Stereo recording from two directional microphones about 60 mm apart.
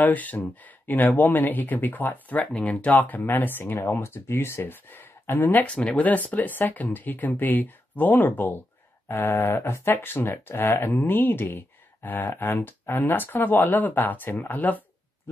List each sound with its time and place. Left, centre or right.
0.0 s speech: left
5.7 s speech: centre